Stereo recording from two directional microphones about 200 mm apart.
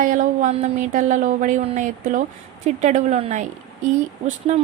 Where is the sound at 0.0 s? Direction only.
40° right (ahead or behind).